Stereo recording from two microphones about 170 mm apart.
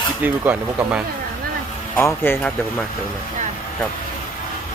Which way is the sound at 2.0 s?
15° left (ahead or behind).